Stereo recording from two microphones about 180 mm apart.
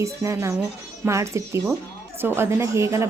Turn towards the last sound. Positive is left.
turn(degrees=-15)  # may be behind; listen again after turning